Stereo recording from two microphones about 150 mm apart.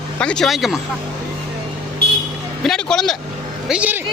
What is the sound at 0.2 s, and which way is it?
Speech, 5° left (ahead or behind).